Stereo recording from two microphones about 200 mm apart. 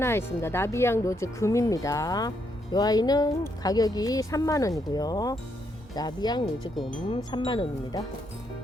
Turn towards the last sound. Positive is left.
turn(degrees=25)  # may be behind; listen again after turning